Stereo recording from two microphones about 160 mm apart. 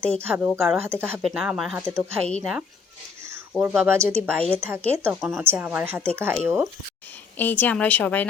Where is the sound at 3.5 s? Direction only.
5° right (ahead or behind).